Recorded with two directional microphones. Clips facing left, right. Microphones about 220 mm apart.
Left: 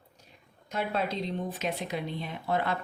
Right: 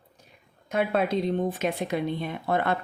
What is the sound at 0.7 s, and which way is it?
Speech, 55° right (ahead or behind).